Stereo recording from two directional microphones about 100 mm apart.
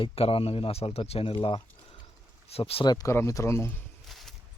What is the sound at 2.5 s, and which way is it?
Speech, 80° left.